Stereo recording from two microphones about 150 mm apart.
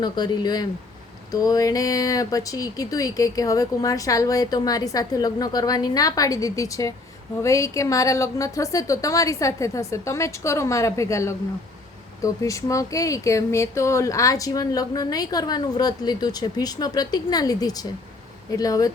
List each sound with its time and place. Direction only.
0.0 s speech: 30° left (ahead or behind)